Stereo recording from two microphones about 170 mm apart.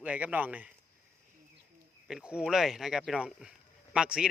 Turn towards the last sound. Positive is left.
turn(degrees=-5)  # may be behind; listen again after turning